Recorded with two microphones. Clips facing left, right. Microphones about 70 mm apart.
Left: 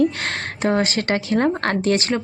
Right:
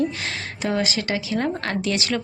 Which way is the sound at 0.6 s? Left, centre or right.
Left.